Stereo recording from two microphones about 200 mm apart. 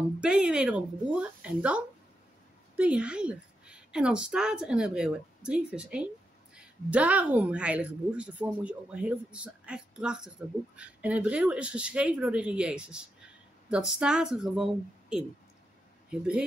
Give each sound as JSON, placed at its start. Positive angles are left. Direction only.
{"t": 0.2, "sound": "a woman's voice", "side_deg": -5}